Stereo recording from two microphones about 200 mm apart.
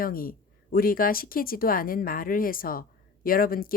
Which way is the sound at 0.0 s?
45° left (ahead or behind).